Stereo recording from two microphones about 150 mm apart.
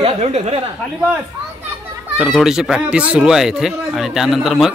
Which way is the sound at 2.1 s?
Centre (ahead or behind).